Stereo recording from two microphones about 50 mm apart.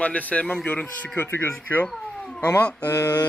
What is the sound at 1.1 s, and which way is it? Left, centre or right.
Speech, left.